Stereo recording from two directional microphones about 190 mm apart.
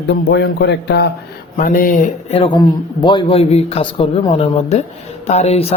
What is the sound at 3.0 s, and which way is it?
A man's voice, 25° left (ahead or behind).